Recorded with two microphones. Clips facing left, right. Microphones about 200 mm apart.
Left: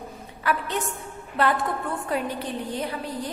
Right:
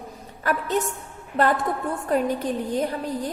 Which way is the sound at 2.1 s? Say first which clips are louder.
Right 7 dB; 45° right (ahead or behind).